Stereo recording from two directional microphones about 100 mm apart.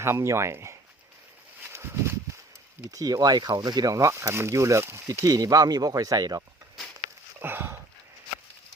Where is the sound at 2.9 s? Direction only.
35° right (ahead or behind).